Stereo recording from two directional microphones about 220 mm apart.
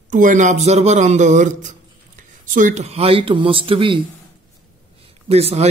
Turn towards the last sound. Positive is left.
turn(degrees=-30)  # may be behind; listen again after turning